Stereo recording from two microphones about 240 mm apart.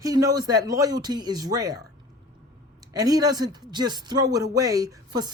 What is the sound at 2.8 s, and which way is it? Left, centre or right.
Speech, centre.